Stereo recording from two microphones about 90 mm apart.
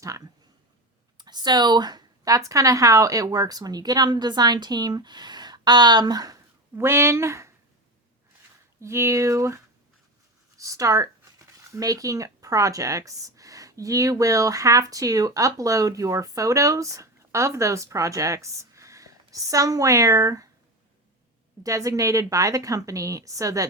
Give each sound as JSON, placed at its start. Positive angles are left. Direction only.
{"t": 1.2, "sound": "speech", "side_deg": -55}
{"t": 6.7, "sound": "speech", "side_deg": -30}
{"t": 8.8, "sound": "a woman's voice", "side_deg": -30}
{"t": 10.6, "sound": "a woman's voice", "side_deg": -40}
{"t": 21.6, "sound": "a woman's voice", "side_deg": -40}